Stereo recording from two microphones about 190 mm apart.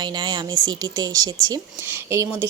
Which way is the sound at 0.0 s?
25° right (ahead or behind).